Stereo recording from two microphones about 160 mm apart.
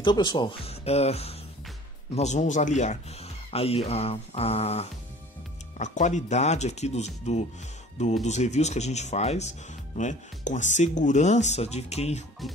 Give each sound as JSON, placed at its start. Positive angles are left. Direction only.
{"t": 0.0, "sound": "speech", "side_deg": 30}